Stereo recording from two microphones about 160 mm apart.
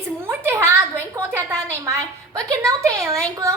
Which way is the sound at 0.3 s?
15° right (ahead or behind).